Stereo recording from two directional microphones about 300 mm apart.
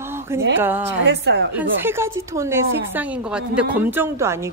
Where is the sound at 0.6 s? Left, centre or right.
Centre.